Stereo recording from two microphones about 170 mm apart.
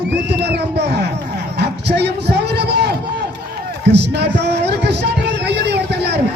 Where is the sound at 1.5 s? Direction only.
80° right.